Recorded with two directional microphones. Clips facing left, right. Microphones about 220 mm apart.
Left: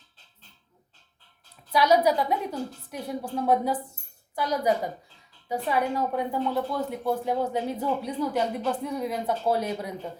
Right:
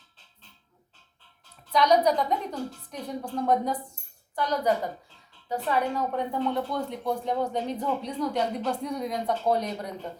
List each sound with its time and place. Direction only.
1.7 s a woman's voice: 5° left (ahead or behind)